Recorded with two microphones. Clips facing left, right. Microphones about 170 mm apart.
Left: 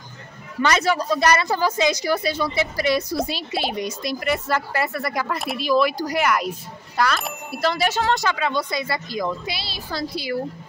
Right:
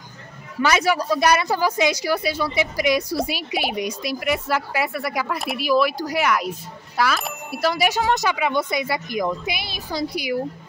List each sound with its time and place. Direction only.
0.6 s speech: 10° right (ahead or behind)